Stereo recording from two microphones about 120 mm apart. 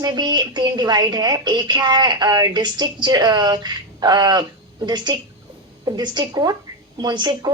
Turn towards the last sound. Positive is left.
turn(degrees=-35)  # may be behind; listen again after turning